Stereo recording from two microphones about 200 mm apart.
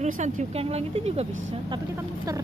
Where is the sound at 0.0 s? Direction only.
35° right (ahead or behind).